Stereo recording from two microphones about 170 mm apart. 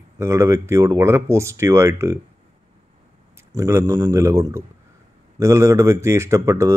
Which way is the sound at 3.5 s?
15° right (ahead or behind).